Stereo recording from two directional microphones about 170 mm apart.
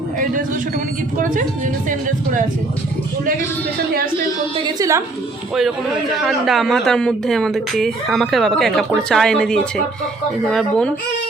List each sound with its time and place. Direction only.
1.2 s speech: 50° right (ahead or behind)
4.5 s a woman's voice: 25° right (ahead or behind)
6.1 s a woman's voice: centre (ahead or behind)